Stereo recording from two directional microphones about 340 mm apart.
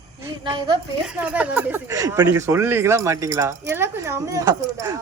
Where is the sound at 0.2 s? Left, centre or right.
Centre.